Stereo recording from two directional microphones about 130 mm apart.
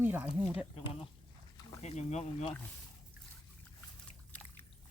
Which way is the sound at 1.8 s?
60° left (ahead or behind).